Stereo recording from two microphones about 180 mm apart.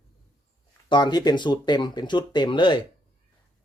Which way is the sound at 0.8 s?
25° left (ahead or behind).